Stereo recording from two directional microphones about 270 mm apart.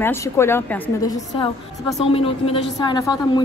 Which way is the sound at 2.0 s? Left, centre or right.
Left.